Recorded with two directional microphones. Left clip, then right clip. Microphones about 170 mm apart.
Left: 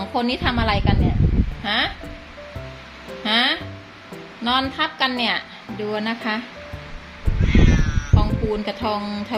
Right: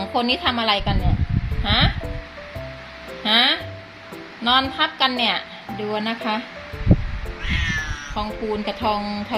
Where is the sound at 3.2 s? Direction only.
10° right (ahead or behind).